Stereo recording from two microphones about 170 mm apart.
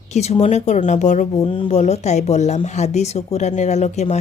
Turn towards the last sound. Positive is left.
turn(degrees=40)  # may be behind; listen again after turning